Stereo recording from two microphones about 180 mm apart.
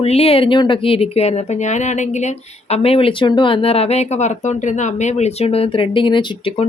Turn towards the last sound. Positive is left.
turn(degrees=30)  # may be behind; listen again after turning